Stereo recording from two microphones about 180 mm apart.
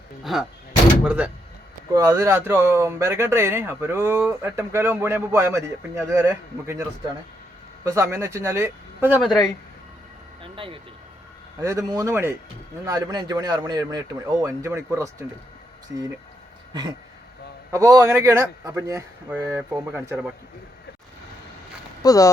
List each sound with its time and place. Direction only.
0.3 s a man's voice: centre (ahead or behind)
1.9 s a man's voice: 20° right (ahead or behind)
7.9 s a man's voice: 15° right (ahead or behind)
9.2 s speech: centre (ahead or behind)
10.4 s vehicle: 30° right (ahead or behind)
11.6 s a man's voice: 15° right (ahead or behind)
17.7 s a man's voice: 15° right (ahead or behind)
22.0 s speech: 20° left (ahead or behind)